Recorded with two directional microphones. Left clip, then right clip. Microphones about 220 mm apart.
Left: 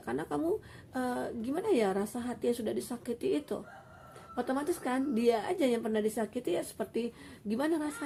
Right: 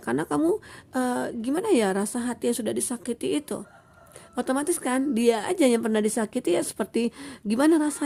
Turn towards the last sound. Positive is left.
turn(degrees=-50)  # may be behind; listen again after turning